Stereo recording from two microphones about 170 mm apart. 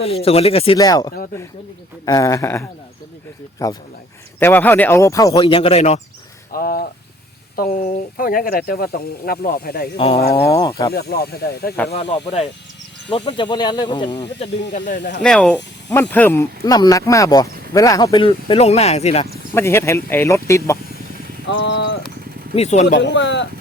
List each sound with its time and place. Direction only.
0.0 s speech: 35° left (ahead or behind)
0.8 s speech: 20° left (ahead or behind)
5.4 s speech: 35° left (ahead or behind)
6.5 s speech: 60° left (ahead or behind)
10.0 s speech: 35° left (ahead or behind)
10.5 s speech: 20° left (ahead or behind)
10.9 s speech: 65° left (ahead or behind)
11.9 s speech: 35° left (ahead or behind)
15.2 s speech: 5° left (ahead or behind); by 19.3 s 40° left (ahead or behind)
19.5 s speech: 15° left (ahead or behind)
21.4 s speech: 90° left
22.5 s speech: 40° left (ahead or behind)
23.0 s speech: 90° left